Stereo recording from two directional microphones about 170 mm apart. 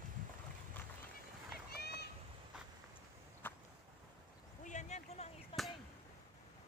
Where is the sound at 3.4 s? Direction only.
10° left (ahead or behind).